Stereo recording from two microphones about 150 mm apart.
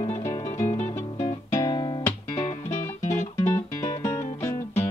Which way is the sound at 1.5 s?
25° left (ahead or behind).